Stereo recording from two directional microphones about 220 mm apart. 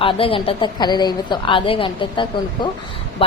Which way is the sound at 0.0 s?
25° left (ahead or behind).